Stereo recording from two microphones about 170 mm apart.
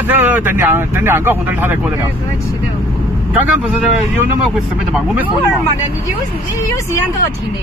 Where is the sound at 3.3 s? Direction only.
5° right (ahead or behind).